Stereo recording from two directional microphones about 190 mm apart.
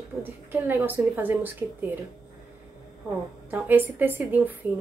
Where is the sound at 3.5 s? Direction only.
10° right (ahead or behind).